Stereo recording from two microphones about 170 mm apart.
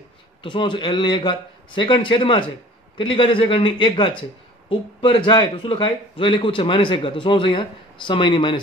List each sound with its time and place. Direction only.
0.4 s a man's voice: 30° left (ahead or behind)